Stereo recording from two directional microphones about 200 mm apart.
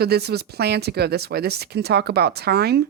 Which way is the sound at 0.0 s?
55° right (ahead or behind).